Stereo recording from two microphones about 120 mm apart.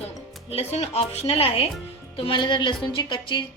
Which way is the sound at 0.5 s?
60° left (ahead or behind).